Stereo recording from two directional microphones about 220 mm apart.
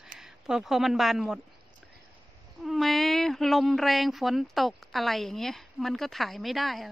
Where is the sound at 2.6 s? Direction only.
Centre (ahead or behind).